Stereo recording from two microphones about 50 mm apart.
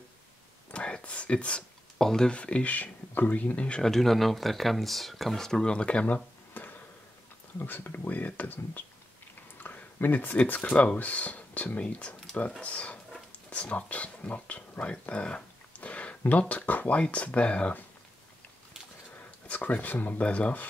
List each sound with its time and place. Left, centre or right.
0.7 s speech: left
2.0 s speech: centre
2.3 s speech: left
3.8 s speech: centre; by 6.2 s left
6.5 s a sound: left
7.5 s speech: left
9.6 s a sound: left
11.0 s speech: left
19.4 s speech: left